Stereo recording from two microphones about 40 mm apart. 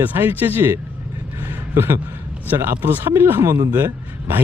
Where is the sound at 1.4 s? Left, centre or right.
Right.